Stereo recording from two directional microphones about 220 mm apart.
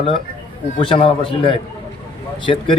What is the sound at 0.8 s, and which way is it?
Speech, 25° left (ahead or behind).